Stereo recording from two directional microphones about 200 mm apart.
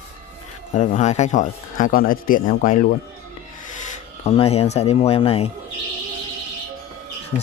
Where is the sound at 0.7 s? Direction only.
35° left (ahead or behind).